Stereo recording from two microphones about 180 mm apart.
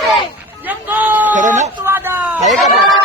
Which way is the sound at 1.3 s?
45° right (ahead or behind).